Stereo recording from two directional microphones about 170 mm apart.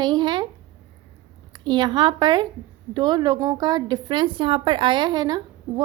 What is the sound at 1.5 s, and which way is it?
A woman's voice, 25° right (ahead or behind).